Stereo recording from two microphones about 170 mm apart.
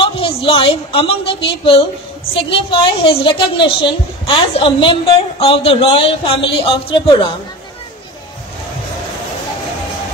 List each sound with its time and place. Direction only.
0.0 s a woman's voice: 35° left (ahead or behind)